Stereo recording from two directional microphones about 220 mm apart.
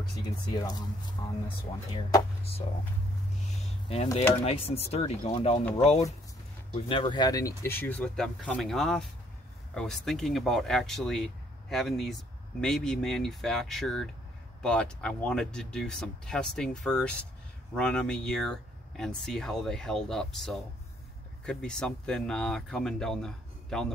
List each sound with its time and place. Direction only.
0.2 s speech: 20° left (ahead or behind)
3.4 s a sound: 30° left (ahead or behind)
4.5 s speech: 25° left (ahead or behind); by 23.9 s 5° left (ahead or behind)